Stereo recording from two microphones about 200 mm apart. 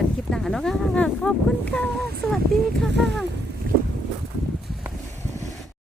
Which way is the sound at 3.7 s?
45° right (ahead or behind).